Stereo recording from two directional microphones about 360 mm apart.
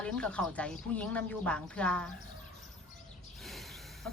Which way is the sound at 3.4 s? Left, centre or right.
Centre.